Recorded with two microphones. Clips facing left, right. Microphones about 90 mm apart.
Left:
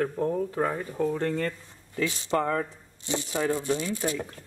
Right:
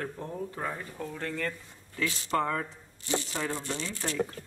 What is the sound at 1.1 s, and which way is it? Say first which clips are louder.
Speech: left 6 dB; 30° left (ahead or behind).